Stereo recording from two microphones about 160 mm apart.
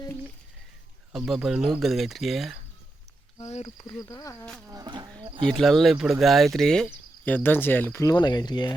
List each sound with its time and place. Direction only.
1.1 s speech: 5° right (ahead or behind)
3.4 s speech: 45° left (ahead or behind)
3.8 s speech: 25° left (ahead or behind)
4.6 s insect: 20° right (ahead or behind)
5.2 s bird: 30° right (ahead or behind)
5.5 s speech: centre (ahead or behind)
8.0 s speech: 25° left (ahead or behind)